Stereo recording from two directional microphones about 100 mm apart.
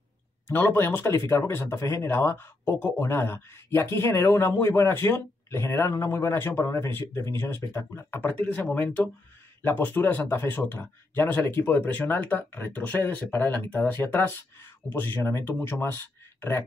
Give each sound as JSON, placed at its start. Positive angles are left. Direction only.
{"t": 0.5, "sound": "speech", "side_deg": 20}